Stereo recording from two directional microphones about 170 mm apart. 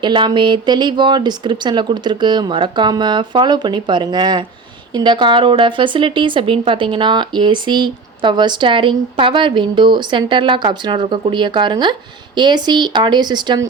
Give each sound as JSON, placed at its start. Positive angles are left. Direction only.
{"t": 0.0, "sound": "a woman's voice", "side_deg": -25}